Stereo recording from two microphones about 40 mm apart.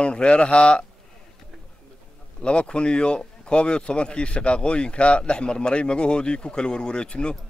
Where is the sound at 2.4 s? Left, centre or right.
Left.